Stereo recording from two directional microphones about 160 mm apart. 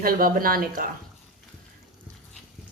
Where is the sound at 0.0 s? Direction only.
65° right (ahead or behind).